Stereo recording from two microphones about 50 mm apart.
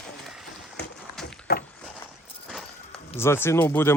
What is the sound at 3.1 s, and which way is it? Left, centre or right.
Speech, left.